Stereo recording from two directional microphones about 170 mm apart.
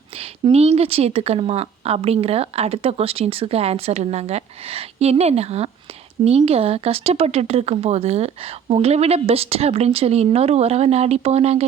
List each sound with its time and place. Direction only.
0.2 s a woman's voice: 35° right (ahead or behind)